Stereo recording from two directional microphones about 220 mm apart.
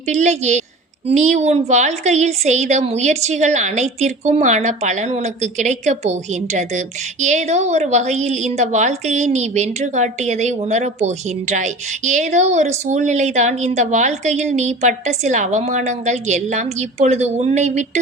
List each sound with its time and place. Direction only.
0.1 s a woman's voice: 30° right (ahead or behind)